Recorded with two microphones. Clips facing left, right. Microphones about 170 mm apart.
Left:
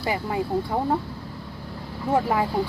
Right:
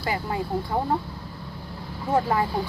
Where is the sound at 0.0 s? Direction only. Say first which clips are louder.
Left 2 dB; 20° left (ahead or behind).